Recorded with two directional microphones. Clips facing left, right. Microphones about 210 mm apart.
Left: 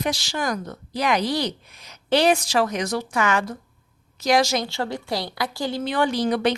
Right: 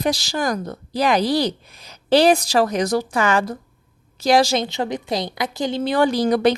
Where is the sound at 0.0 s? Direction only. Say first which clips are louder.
Right 4 dB; 40° right (ahead or behind); by 5.8 s 20° right (ahead or behind).